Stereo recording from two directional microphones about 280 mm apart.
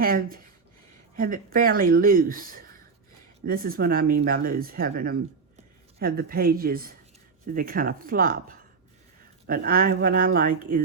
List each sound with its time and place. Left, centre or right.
0.0 s speech: right